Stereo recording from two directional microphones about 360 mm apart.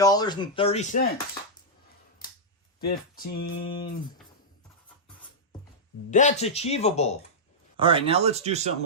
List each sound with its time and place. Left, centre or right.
0.0 s speech: centre
2.8 s speech: left
6.1 s speech: centre
7.8 s speech: centre